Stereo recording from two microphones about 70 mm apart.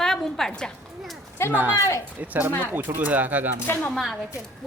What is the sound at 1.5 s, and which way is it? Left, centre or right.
Speech, right.